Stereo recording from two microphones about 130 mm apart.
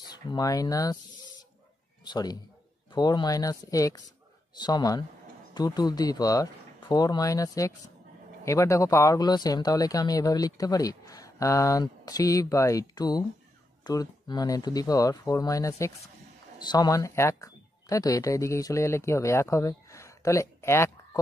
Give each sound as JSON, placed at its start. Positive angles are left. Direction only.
{"t": 0.1, "sound": "speech", "side_deg": 30}
{"t": 2.0, "sound": "speech", "side_deg": 30}